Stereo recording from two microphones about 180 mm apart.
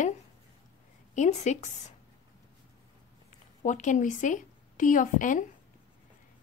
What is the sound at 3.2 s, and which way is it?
A woman's voice, 45° left (ahead or behind).